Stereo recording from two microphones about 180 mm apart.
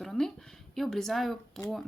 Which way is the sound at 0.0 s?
Centre (ahead or behind).